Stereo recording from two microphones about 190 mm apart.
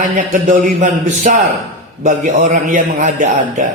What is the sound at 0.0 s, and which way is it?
A man's voice, 45° right (ahead or behind).